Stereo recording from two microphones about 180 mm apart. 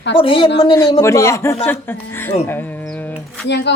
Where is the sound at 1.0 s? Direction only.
15° left (ahead or behind).